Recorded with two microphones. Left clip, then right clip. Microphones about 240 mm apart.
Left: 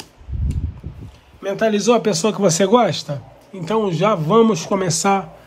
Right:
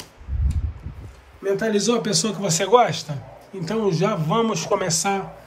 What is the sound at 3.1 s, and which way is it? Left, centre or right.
Speech, left.